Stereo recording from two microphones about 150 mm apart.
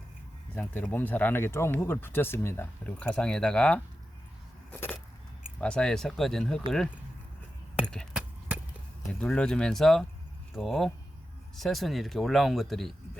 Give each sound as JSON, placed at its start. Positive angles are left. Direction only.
{"t": 0.5, "sound": "speech", "side_deg": 10}
{"t": 4.7, "sound": "keys jangling", "side_deg": 10}
{"t": 5.5, "sound": "speech", "side_deg": 5}
{"t": 7.9, "sound": "a sound", "side_deg": 5}
{"t": 9.2, "sound": "speech", "side_deg": 5}